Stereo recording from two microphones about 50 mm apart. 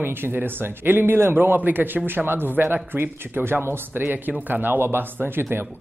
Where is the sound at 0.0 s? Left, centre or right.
Right.